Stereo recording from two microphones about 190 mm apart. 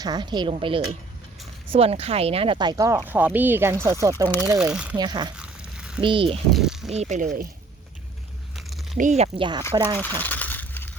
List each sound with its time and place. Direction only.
0.0 s speech: 20° right (ahead or behind)
4.5 s speech: 5° right (ahead or behind)
4.9 s speech: 20° right (ahead or behind)
5.4 s a sound: 5° right (ahead or behind)
6.0 s speech: 25° right (ahead or behind)
6.5 s a sound: centre (ahead or behind)
6.9 s speech: 35° right (ahead or behind)
8.5 s a sound: centre (ahead or behind)
9.0 s speech: 35° right (ahead or behind); by 10.0 s 20° right (ahead or behind)
10.2 s crushing: 10° left (ahead or behind)